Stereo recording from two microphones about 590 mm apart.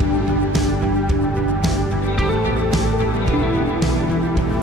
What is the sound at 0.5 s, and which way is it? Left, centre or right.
Music, centre.